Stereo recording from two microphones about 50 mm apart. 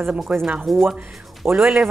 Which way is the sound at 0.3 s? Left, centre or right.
Right.